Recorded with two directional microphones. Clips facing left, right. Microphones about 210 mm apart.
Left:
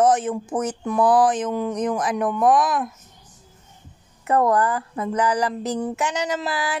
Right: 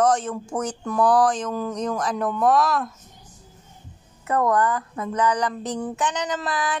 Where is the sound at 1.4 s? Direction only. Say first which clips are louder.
Left 3 dB; 20° left (ahead or behind).